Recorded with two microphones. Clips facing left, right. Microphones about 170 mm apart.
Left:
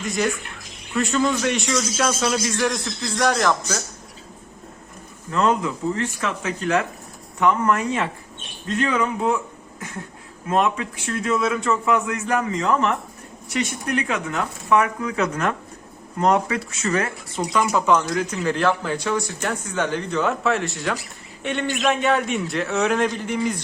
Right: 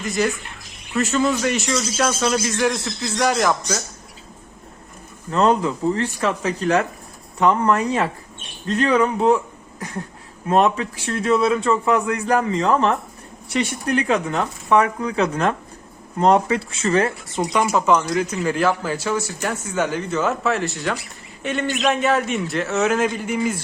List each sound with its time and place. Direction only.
0.0 s a man's voice: centre (ahead or behind)
5.3 s a man's voice: 35° right (ahead or behind)
10.5 s a man's voice: 35° right (ahead or behind)
17.7 s a man's voice: 5° right (ahead or behind)